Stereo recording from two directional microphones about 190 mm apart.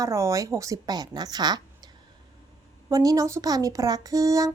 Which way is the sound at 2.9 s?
20° right (ahead or behind).